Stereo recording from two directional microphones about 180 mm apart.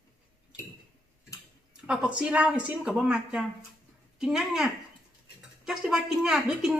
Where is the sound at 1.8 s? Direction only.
5° right (ahead or behind).